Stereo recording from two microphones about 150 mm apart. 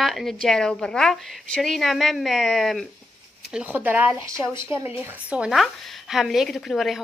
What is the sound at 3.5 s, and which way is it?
A woman's voice, 10° right (ahead or behind).